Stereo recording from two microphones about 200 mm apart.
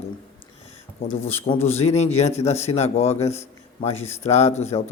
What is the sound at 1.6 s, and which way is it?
A man's voice, 35° left (ahead or behind).